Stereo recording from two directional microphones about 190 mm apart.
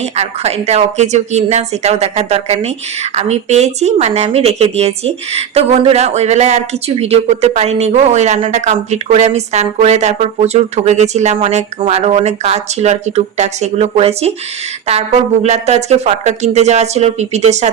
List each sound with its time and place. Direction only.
0.0 s speech: 35° right (ahead or behind)
15.4 s speech: 35° right (ahead or behind)